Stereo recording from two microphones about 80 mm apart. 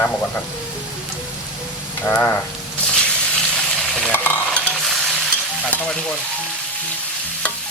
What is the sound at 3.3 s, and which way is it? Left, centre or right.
Frying, centre.